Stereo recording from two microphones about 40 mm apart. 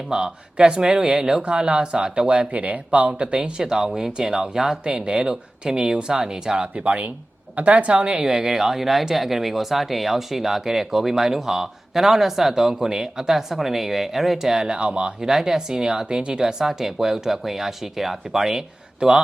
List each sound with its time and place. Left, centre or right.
0.1 s speech: right
2.5 s speech: right
3.1 s speech: right
8.2 s speech: centre
14.8 s speech: right
15.2 s speech: centre